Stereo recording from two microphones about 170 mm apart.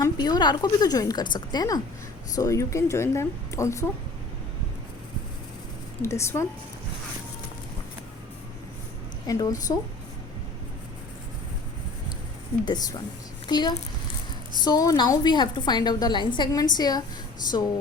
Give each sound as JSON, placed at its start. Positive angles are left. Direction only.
{"t": 0.0, "sound": "a woman's voice", "side_deg": 25}
{"t": 6.0, "sound": "speech", "side_deg": 15}
{"t": 9.2, "sound": "a woman's voice", "side_deg": 20}
{"t": 12.6, "sound": "a woman's voice", "side_deg": 25}